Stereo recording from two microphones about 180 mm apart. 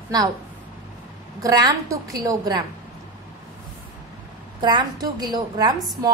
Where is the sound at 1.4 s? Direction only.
20° right (ahead or behind).